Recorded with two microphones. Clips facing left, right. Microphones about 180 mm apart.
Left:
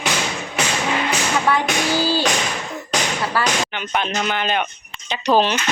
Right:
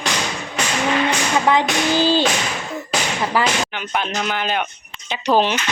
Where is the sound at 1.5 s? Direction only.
15° right (ahead or behind).